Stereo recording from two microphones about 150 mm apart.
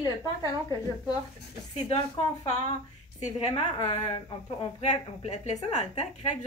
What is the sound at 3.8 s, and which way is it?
Speech, 35° left (ahead or behind).